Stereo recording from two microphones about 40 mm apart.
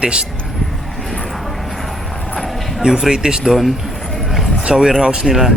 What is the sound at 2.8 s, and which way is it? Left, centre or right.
Speech, centre.